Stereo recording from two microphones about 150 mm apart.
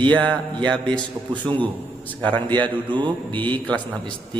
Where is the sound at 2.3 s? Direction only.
30° right (ahead or behind).